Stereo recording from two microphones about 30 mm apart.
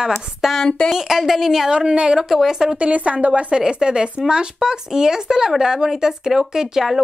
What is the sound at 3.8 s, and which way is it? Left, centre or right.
Speech, right.